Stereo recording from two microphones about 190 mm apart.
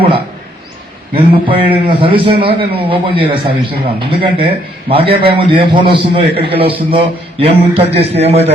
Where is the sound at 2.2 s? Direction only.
30° right (ahead or behind).